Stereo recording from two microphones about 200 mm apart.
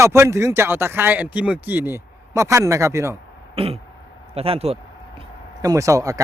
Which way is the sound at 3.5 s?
30° right (ahead or behind).